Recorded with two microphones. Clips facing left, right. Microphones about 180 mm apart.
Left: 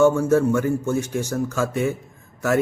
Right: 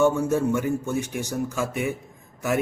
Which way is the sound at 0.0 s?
15° right (ahead or behind).